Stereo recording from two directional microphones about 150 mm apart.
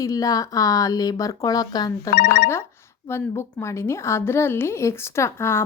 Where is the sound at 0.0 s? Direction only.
25° left (ahead or behind).